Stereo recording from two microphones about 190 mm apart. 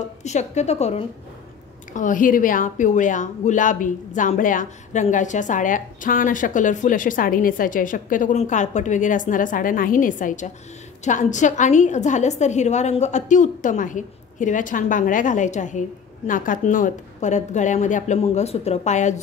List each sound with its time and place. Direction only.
0.2 s a woman's voice: 35° left (ahead or behind)